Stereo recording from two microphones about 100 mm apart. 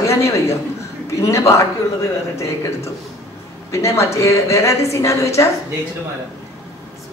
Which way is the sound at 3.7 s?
30° left (ahead or behind).